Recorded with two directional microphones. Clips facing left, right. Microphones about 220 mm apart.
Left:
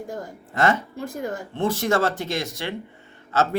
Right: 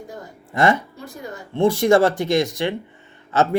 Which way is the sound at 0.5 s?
15° right (ahead or behind).